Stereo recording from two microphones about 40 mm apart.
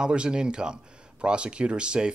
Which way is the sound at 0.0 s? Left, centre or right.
Right.